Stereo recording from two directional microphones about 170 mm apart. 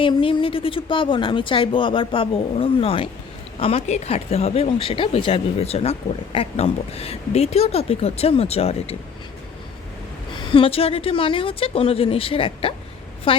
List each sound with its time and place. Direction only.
0.0 s speech: 30° left (ahead or behind)
10.3 s speech: 30° left (ahead or behind)